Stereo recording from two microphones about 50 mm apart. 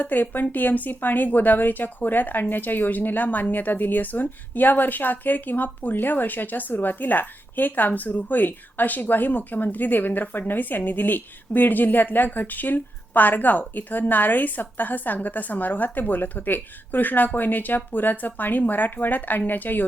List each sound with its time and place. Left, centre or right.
0.0 s a woman's voice: left